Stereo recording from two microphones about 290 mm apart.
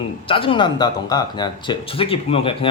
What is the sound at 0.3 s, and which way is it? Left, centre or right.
Speech, centre.